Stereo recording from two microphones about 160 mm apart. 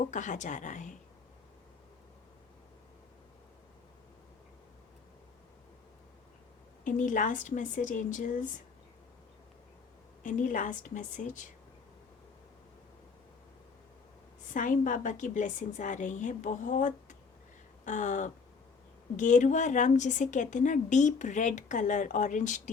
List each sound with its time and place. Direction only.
0.0 s a woman's voice: 50° left (ahead or behind)
6.8 s a woman's voice: 55° left (ahead or behind)
10.2 s a woman's voice: 55° left (ahead or behind)
14.5 s a woman's voice: 55° left (ahead or behind)